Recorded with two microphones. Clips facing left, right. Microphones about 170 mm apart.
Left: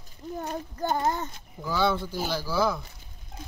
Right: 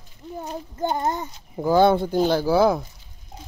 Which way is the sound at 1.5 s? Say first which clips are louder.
Right 9 dB; 50° right (ahead or behind).